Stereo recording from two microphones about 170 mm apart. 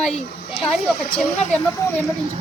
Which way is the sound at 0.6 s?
5° left (ahead or behind).